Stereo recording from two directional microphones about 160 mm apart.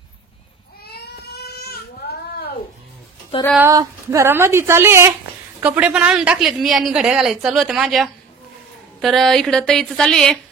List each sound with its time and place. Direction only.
0.8 s baby cry: 85° left
3.3 s speech: 35° left (ahead or behind)
3.6 s a woman's voice: 20° right (ahead or behind); by 10.4 s centre (ahead or behind)